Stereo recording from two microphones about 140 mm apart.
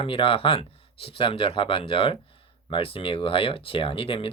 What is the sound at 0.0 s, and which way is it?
Speech, 40° left (ahead or behind).